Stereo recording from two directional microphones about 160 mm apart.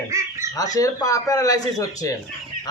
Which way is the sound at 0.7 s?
20° left (ahead or behind).